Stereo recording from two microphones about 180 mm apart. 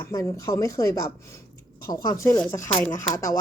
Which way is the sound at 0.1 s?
15° left (ahead or behind).